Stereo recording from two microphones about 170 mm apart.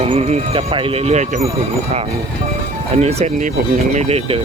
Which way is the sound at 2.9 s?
40° right (ahead or behind).